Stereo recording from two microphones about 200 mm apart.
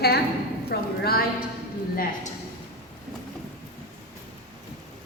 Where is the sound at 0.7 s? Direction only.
50° left (ahead or behind).